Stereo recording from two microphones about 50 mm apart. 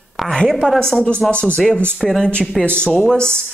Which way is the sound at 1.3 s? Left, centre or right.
Left.